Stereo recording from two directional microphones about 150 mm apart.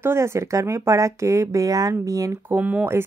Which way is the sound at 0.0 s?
15° right (ahead or behind).